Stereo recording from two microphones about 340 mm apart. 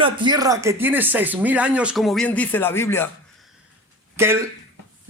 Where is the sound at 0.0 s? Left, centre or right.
Centre.